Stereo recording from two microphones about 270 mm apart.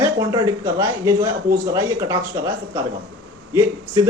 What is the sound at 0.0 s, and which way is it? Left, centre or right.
A woman's voice, centre.